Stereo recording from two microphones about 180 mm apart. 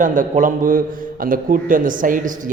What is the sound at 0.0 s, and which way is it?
Speech, 45° right (ahead or behind).